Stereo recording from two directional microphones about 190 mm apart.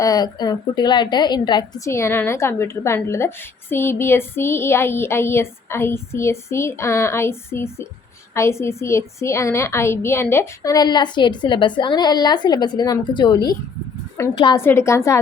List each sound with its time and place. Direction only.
0.0 s a woman's voice: 20° left (ahead or behind)